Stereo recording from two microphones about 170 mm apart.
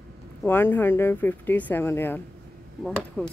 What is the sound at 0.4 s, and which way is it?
Speech, 10° left (ahead or behind).